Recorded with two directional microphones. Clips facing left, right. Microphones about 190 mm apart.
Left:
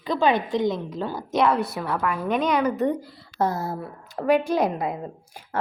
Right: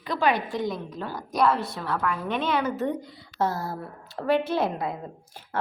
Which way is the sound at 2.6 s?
15° left (ahead or behind).